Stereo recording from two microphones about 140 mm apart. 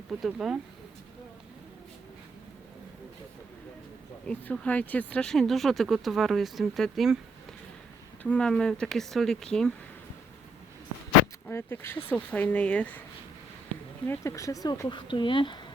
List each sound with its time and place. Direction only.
0.1 s speech: centre (ahead or behind)
4.3 s speech: 10° left (ahead or behind)
8.2 s speech: 10° left (ahead or behind)
11.4 s speech: 15° left (ahead or behind)
14.1 s speech: 20° left (ahead or behind)